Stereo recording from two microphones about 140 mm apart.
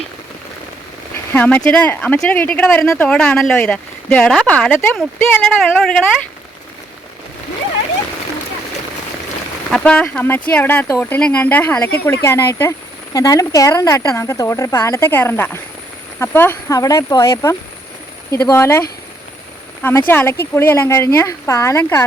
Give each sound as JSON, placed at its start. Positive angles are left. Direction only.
{"t": 1.3, "sound": "speech", "side_deg": 10}
{"t": 9.6, "sound": "speech", "side_deg": 5}
{"t": 19.8, "sound": "speech", "side_deg": 15}